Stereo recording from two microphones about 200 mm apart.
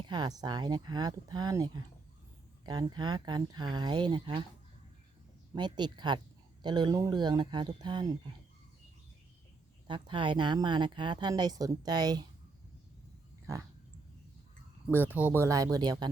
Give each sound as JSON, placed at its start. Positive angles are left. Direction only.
{"t": 0.0, "sound": "speech", "side_deg": -20}
{"t": 5.5, "sound": "speech", "side_deg": -20}
{"t": 9.8, "sound": "speech", "side_deg": -25}
{"t": 13.5, "sound": "dog", "side_deg": -15}
{"t": 14.8, "sound": "speech", "side_deg": -10}